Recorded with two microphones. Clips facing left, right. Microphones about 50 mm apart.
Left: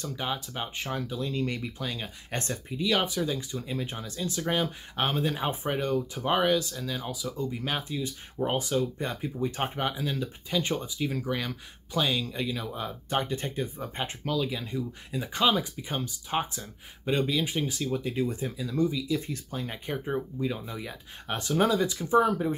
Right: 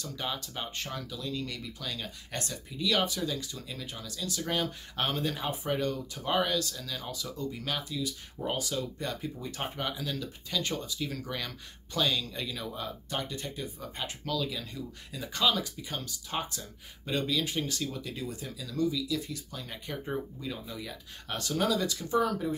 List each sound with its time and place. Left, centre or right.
0.0 s speech: left
5.4 s speech: left
13.1 s speech: left